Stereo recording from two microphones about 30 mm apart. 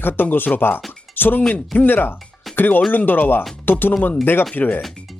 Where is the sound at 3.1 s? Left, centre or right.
Left.